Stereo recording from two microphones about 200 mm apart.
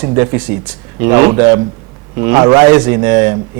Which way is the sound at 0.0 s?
20° right (ahead or behind).